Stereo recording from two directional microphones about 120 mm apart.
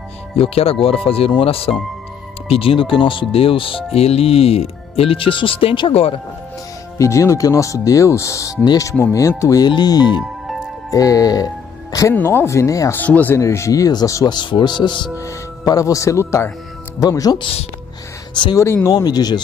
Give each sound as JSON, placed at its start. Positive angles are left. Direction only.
{"t": 0.4, "sound": "speech", "side_deg": 55}
{"t": 7.0, "sound": "speech", "side_deg": 25}
{"t": 13.0, "sound": "speech", "side_deg": 15}
{"t": 13.4, "sound": "speech", "side_deg": 25}
{"t": 15.1, "sound": "speech", "side_deg": 30}
{"t": 18.6, "sound": "speech", "side_deg": 25}